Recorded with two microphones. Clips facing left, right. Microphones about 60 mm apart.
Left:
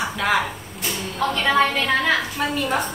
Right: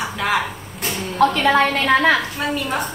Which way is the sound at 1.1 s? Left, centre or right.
Right.